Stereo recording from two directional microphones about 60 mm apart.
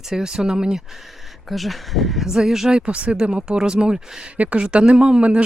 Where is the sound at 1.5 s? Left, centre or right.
Centre.